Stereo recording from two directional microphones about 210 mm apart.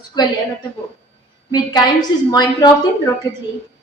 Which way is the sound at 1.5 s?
20° left (ahead or behind).